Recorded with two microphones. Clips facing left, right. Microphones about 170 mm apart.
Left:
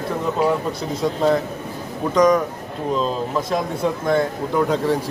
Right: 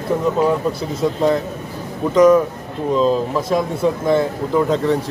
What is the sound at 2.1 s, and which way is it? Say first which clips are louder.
Speech: right 4 dB; 5° right (ahead or behind).